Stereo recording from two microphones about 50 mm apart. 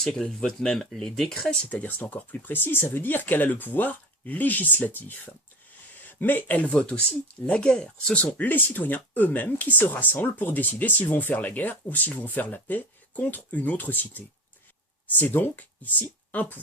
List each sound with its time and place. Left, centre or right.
0.0 s speech: centre
1.7 s speech: left
8.4 s speech: left